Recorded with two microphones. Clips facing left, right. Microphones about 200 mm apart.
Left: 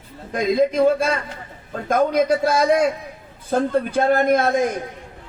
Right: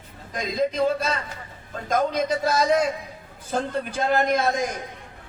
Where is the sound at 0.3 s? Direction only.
50° left (ahead or behind).